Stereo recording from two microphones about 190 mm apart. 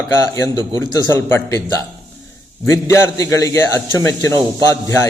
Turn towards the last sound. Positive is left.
turn(degrees=15)  # may be behind; listen again after turning